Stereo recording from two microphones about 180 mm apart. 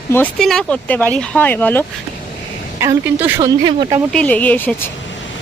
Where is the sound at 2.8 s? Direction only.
15° right (ahead or behind).